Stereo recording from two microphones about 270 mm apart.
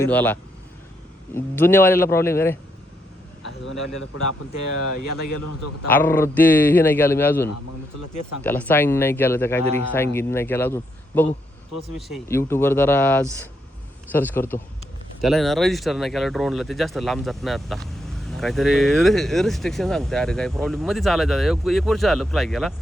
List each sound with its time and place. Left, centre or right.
0.0 s a man's voice: centre
3.4 s a man's voice: left
5.9 s a man's voice: centre
12.3 s a man's voice: centre